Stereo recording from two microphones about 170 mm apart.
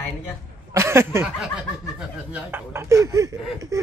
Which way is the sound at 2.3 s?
15° right (ahead or behind).